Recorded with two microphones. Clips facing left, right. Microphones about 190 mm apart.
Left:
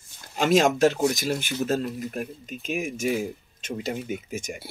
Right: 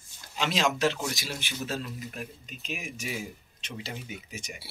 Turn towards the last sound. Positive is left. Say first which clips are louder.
# left 9 dB
turn(degrees=50)  # may be behind; listen again after turning